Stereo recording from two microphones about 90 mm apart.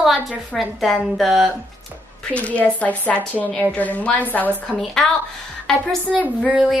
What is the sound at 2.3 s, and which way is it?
A woman's voice, 15° left (ahead or behind).